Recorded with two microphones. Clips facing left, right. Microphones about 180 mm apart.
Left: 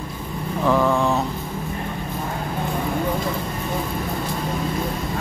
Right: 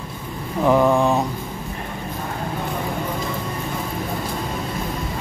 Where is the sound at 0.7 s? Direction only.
15° right (ahead or behind).